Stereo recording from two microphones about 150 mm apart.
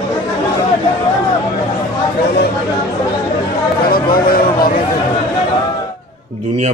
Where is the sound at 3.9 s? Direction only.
80° left.